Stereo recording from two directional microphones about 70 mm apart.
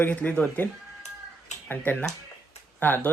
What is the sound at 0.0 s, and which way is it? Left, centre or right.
Speech, left.